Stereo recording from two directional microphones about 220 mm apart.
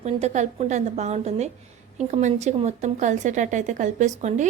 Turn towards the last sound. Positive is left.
turn(degrees=-35)  # may be behind; listen again after turning